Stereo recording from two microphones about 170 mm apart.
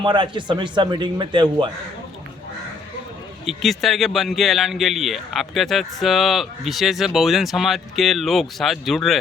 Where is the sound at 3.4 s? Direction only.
Centre (ahead or behind).